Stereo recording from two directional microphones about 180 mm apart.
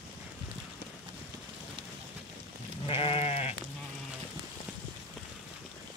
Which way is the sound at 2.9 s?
30° left (ahead or behind).